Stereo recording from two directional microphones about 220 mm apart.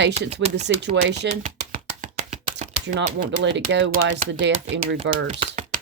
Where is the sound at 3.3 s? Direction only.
60° right (ahead or behind).